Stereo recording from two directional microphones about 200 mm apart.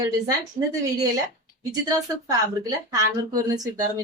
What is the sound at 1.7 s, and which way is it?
Speech, 20° right (ahead or behind).